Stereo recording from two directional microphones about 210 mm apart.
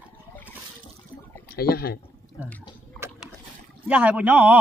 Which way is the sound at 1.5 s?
50° left (ahead or behind).